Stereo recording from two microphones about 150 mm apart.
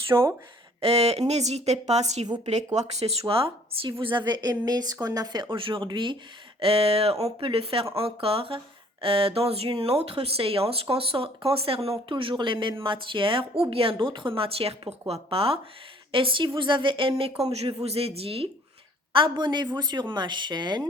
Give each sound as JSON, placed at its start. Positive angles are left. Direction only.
{"t": 0.1, "sound": "speech", "side_deg": -15}
{"t": 0.8, "sound": "a woman's voice", "side_deg": -40}
{"t": 2.2, "sound": "speech", "side_deg": -30}
{"t": 2.7, "sound": "speech", "side_deg": -45}